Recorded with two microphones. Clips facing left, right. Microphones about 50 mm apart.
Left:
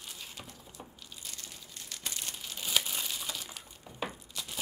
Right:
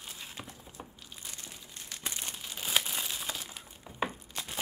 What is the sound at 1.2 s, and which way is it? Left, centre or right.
Crumpling, right.